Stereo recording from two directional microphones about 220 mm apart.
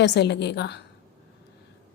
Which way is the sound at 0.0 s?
50° left (ahead or behind).